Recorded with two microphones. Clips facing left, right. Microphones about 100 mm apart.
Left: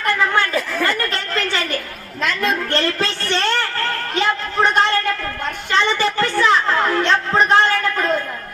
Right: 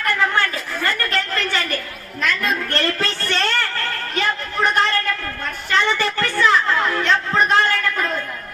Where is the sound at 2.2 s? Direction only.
20° left (ahead or behind).